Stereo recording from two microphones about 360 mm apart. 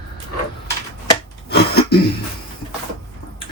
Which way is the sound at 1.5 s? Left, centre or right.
Left.